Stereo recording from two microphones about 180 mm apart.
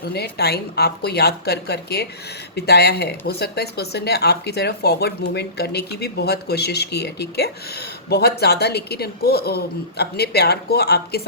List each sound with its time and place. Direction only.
0.0 s speech: 60° left (ahead or behind)